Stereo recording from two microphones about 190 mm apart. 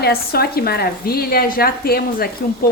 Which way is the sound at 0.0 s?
55° left (ahead or behind).